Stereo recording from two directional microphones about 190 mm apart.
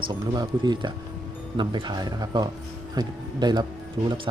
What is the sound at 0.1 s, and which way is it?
Speech, 25° right (ahead or behind).